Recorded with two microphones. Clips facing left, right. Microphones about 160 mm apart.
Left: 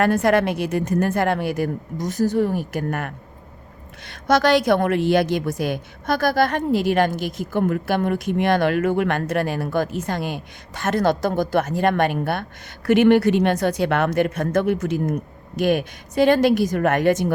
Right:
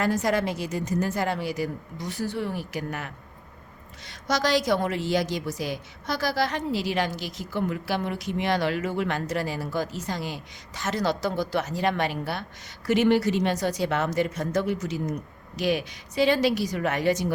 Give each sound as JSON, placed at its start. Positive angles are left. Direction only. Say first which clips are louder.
{"t": 0.0, "sound": "a woman's voice", "louder": "left 7 dB", "side_deg": 60}